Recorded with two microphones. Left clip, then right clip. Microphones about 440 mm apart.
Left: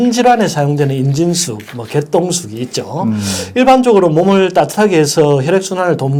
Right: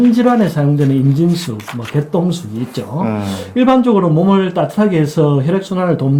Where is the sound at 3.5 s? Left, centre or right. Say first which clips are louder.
Left 4 dB; left.